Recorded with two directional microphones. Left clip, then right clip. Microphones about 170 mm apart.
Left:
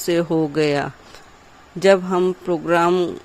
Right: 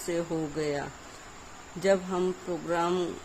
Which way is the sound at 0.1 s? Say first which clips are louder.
Left 12 dB; 50° left (ahead or behind).